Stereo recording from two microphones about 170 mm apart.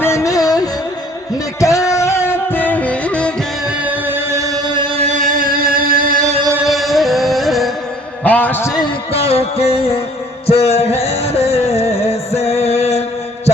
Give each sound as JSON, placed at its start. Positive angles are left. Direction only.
{"t": 0.0, "sound": "music", "side_deg": 15}
{"t": 3.8, "sound": "singing", "side_deg": -10}
{"t": 5.0, "sound": "music", "side_deg": -50}
{"t": 6.7, "sound": "music", "side_deg": 0}
{"t": 8.2, "sound": "a sound", "side_deg": 10}
{"t": 9.1, "sound": "music", "side_deg": 35}